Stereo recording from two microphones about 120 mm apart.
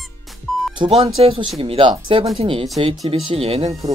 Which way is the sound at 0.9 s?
55° right (ahead or behind).